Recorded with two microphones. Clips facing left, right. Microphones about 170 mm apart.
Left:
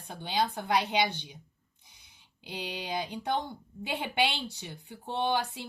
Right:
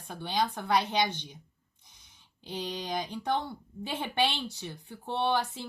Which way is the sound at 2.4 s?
10° left (ahead or behind).